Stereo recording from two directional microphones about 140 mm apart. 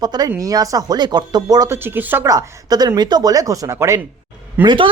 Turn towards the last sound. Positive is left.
turn(degrees=-35)  # may be behind; listen again after turning